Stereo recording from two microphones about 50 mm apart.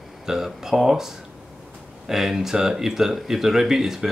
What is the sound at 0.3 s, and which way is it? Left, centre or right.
Speech, centre.